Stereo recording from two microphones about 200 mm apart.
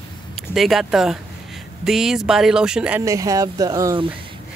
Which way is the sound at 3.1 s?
15° right (ahead or behind).